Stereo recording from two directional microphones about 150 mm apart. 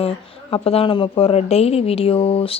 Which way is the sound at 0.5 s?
40° left (ahead or behind).